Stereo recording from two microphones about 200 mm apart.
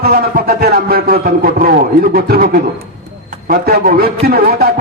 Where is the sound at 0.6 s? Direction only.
50° right (ahead or behind).